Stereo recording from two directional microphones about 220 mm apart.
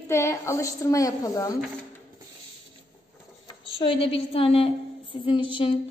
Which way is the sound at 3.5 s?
25° left (ahead or behind).